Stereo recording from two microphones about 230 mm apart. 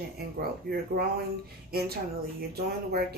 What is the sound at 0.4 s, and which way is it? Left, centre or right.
Speech, right.